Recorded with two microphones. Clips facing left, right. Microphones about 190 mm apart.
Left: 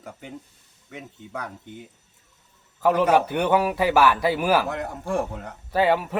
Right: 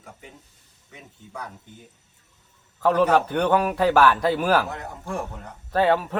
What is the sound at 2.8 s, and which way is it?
A man's voice, 10° left (ahead or behind).